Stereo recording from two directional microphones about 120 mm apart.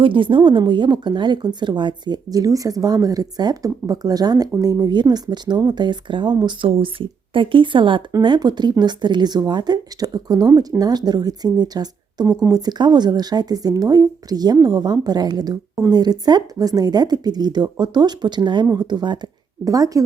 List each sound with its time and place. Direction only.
0.0 s speech: 45° right (ahead or behind); by 20.0 s 30° right (ahead or behind)